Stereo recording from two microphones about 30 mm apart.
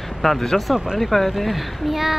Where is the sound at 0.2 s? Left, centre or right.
Centre.